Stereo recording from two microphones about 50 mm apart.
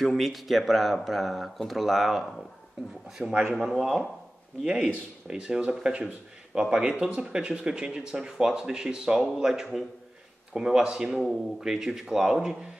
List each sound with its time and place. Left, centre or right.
0.0 s speech: centre
5.3 s speech: centre